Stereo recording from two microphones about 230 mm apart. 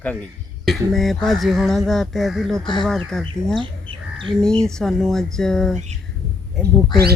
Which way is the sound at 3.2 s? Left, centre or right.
Right.